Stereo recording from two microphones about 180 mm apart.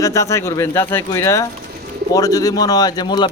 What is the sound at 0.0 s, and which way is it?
A man's voice, 15° left (ahead or behind).